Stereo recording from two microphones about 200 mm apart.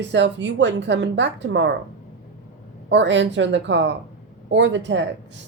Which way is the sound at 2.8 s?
65° right (ahead or behind).